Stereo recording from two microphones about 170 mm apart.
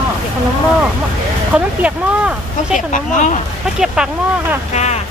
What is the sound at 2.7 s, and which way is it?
Speech, 45° left (ahead or behind).